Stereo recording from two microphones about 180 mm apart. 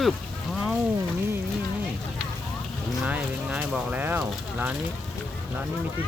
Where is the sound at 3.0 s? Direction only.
5° right (ahead or behind).